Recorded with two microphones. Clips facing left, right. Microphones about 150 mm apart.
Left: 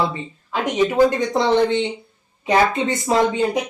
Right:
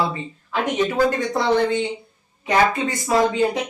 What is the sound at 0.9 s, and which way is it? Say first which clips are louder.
Speech: left 3 dB; 20° left (ahead or behind).